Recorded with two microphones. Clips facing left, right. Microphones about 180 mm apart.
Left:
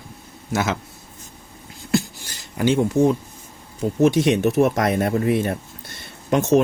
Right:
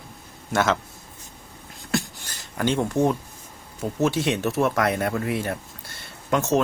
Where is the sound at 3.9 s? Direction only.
15° left (ahead or behind).